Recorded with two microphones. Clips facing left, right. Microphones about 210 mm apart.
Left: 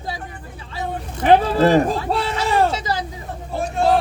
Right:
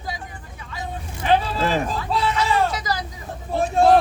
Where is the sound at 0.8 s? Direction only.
55° left (ahead or behind).